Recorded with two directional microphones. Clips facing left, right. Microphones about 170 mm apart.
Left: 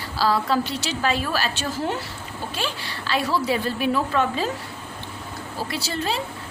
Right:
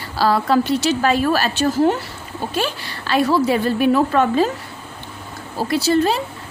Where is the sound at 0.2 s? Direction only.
55° right (ahead or behind).